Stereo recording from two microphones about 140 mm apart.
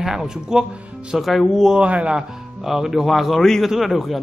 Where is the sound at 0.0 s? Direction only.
5° right (ahead or behind).